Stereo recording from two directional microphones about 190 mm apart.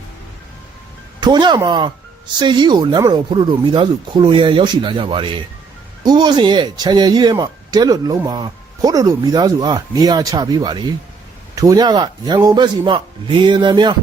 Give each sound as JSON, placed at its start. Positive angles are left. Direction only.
{"t": 1.2, "sound": "speech", "side_deg": -25}